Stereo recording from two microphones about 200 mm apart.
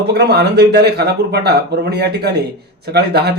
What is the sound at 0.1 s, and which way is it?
A man's voice, 55° right (ahead or behind).